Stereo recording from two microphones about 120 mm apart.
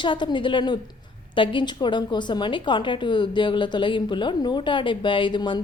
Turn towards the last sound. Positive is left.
turn(degrees=40)  # may be behind; listen again after turning